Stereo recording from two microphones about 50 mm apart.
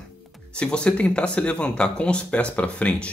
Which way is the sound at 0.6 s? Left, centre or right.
Left.